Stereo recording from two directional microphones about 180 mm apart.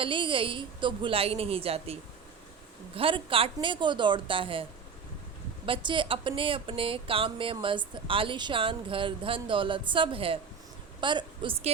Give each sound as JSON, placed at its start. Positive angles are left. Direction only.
{"t": 0.0, "sound": "speech", "side_deg": -30}
{"t": 5.6, "sound": "speech", "side_deg": -30}